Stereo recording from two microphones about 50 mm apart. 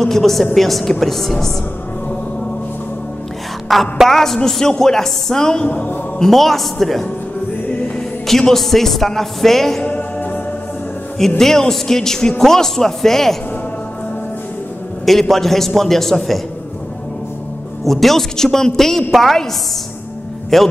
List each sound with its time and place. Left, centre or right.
0.0 s speech: centre
3.6 s a man's voice: centre
8.3 s speech: centre
9.8 s music: left
11.1 s a man's voice: centre
15.0 s speech: centre
17.8 s a man's voice: centre
20.5 s speech: centre